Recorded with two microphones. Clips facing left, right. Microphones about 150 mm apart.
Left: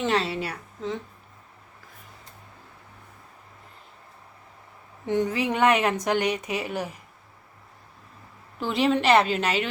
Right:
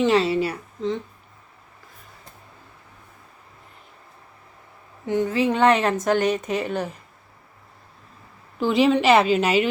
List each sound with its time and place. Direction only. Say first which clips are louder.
0.0 s a woman's voice: right 7 dB; centre (ahead or behind)
5.2 s speech: right 4 dB; 15° left (ahead or behind)
8.6 s a woman's voice: right 5 dB; centre (ahead or behind)